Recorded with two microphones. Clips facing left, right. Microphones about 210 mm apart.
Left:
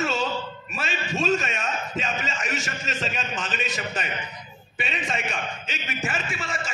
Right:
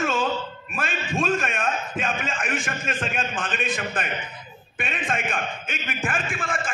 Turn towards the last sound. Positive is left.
turn(degrees=-50)  # may be behind; listen again after turning